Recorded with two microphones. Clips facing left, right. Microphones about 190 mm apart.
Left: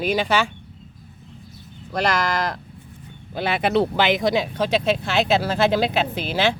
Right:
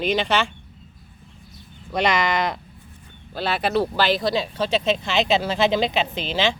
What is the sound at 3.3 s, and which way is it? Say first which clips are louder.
Speech: left 2 dB; 15° left (ahead or behind).